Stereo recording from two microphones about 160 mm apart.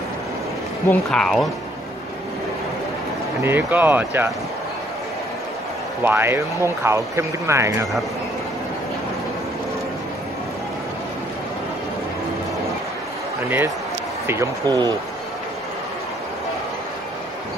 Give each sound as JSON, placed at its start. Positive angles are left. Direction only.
{"t": 0.8, "sound": "speech", "side_deg": 5}
{"t": 3.4, "sound": "speech", "side_deg": -15}
{"t": 6.0, "sound": "speech", "side_deg": -15}
{"t": 14.2, "sound": "speech", "side_deg": -15}